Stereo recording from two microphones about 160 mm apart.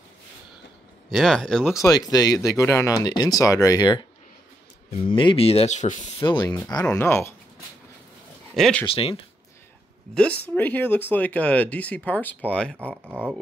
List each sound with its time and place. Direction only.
1.1 s speech: 5° left (ahead or behind)
2.0 s speech: 20° left (ahead or behind)
5.1 s speech: 35° left (ahead or behind); by 6.1 s 50° left (ahead or behind)
6.1 s speech: 30° left (ahead or behind)
8.5 s speech: centre (ahead or behind)
8.8 s speech: 35° left (ahead or behind)
10.1 s speech: 10° left (ahead or behind)
13.0 s speech: 10° right (ahead or behind)